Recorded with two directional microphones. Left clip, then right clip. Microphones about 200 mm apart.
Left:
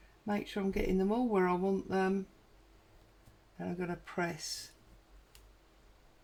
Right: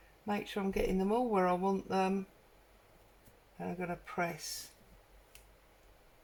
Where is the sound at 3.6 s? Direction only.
35° left (ahead or behind).